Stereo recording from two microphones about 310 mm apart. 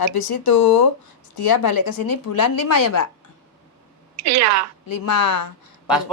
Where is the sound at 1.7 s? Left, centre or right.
Left.